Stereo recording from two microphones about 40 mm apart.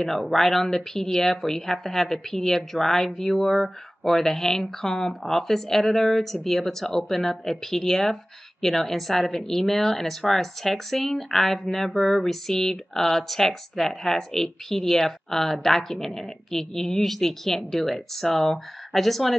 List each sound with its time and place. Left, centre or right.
0.0 s a woman's voice: centre